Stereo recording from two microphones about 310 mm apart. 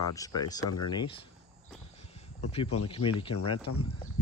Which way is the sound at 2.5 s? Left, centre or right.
Centre.